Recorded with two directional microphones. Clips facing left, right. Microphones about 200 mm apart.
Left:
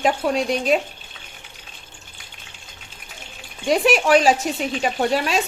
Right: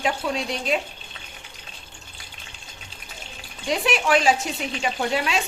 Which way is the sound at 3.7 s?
45° left (ahead or behind).